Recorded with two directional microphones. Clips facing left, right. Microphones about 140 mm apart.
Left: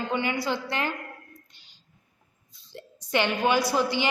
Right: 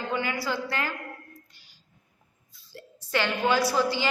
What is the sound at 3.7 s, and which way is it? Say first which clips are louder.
Speech: left 1 dB; 20° left (ahead or behind).